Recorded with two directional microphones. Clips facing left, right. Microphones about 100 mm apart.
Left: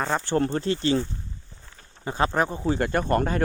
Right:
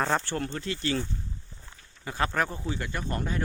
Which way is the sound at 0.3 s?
40° left (ahead or behind).